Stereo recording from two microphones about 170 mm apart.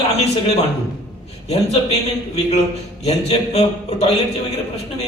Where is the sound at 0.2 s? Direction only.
40° left (ahead or behind).